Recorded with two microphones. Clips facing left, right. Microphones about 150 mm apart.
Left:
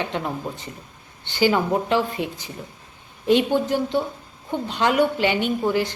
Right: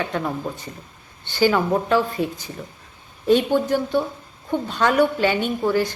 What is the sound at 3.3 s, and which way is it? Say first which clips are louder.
Speech: right 1 dB; 15° left (ahead or behind).